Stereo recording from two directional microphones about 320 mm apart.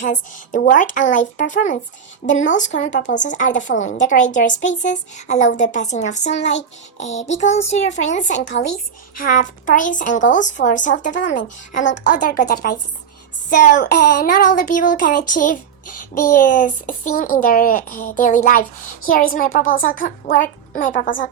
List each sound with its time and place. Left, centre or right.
0.0 s speech: left
13.6 s speech: left